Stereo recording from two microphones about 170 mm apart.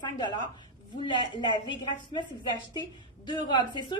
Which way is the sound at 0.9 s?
25° left (ahead or behind).